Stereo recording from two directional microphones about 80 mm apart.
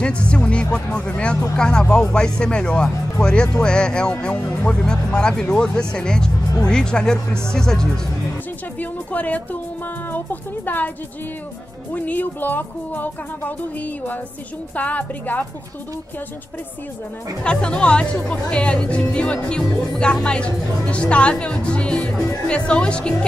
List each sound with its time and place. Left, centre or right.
0.0 s speech: centre
8.7 s speech: centre
11.9 s speech: left
17.4 s speech: centre